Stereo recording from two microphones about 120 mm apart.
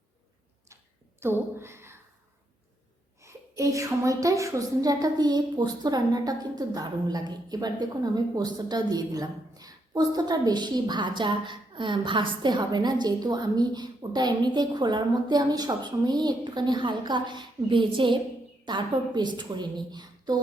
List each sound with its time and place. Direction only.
1.2 s speech: 20° right (ahead or behind)
3.2 s a woman's voice: 25° right (ahead or behind)